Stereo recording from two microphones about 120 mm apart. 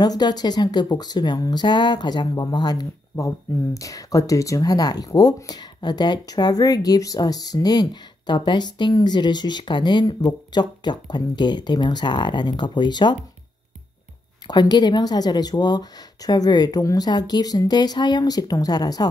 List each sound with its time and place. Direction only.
0.0 s a woman's voice: 35° left (ahead or behind)
14.5 s a woman's voice: 35° left (ahead or behind)